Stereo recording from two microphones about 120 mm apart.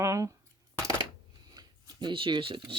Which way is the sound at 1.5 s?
40° right (ahead or behind).